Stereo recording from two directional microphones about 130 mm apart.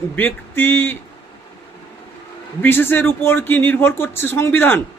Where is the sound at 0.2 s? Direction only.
15° left (ahead or behind).